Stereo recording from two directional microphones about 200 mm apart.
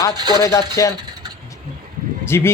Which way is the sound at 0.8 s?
15° left (ahead or behind).